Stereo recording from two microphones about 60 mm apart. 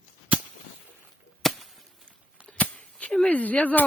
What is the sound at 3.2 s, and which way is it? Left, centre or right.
Speech, left.